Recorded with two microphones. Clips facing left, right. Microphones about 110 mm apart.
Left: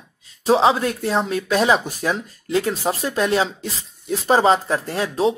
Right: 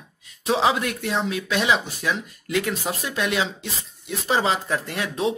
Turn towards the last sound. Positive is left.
turn(degrees=35)  # may be behind; listen again after turning